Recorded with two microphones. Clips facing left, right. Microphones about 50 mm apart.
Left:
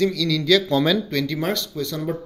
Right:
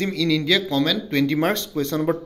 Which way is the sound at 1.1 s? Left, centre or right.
Right.